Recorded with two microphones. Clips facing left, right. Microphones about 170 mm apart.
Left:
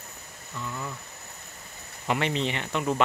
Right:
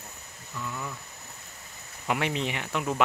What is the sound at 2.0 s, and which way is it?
Speech, 5° right (ahead or behind).